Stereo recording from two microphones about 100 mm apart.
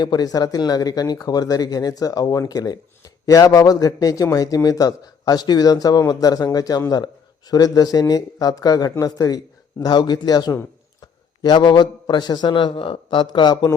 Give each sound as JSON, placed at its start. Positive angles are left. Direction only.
{"t": 0.0, "sound": "a man's voice", "side_deg": 40}